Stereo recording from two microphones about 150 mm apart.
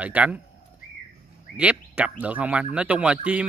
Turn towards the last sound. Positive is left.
turn(degrees=-10)  # may be behind; listen again after turning